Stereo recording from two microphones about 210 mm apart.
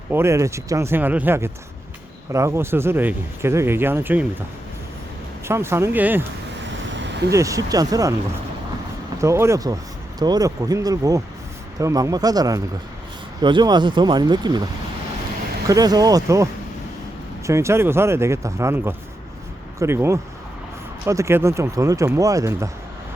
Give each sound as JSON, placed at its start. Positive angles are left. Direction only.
{"t": 0.1, "sound": "speech", "side_deg": -10}
{"t": 5.5, "sound": "speech", "side_deg": -10}
{"t": 6.9, "sound": "a sound", "side_deg": -60}
{"t": 7.3, "sound": "speech", "side_deg": -15}
{"t": 9.2, "sound": "speech", "side_deg": -15}